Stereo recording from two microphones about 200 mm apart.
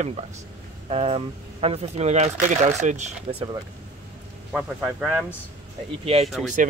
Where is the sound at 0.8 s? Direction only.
30° right (ahead or behind).